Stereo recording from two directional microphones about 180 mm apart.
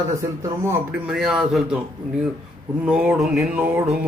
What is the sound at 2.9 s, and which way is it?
A man's voice, 5° right (ahead or behind).